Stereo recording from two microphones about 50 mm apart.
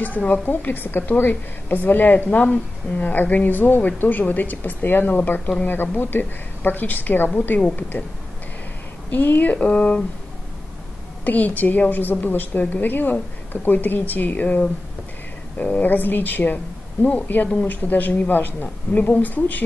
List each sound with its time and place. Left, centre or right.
0.0 s a woman's voice: left
9.1 s speech: left
11.2 s a woman's voice: left